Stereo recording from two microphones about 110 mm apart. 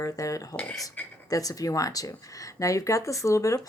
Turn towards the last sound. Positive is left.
turn(degrees=30)  # may be behind; listen again after turning